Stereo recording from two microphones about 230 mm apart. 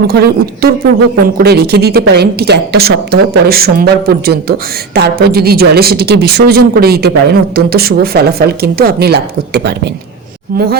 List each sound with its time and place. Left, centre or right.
0.1 s speech: right